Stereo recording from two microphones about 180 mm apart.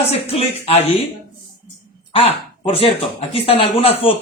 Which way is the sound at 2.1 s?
35° left (ahead or behind).